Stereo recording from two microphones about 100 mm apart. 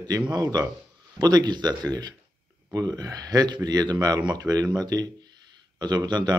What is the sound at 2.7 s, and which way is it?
Speech, 35° right (ahead or behind).